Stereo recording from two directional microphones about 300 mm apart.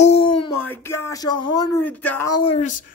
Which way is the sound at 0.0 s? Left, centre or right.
Centre.